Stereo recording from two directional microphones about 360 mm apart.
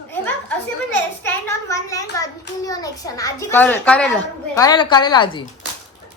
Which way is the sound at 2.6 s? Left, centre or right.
Centre.